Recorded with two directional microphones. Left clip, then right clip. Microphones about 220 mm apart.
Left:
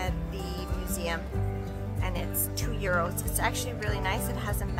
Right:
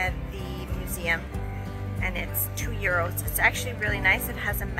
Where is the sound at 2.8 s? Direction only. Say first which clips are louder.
Right 3 dB; 5° left (ahead or behind).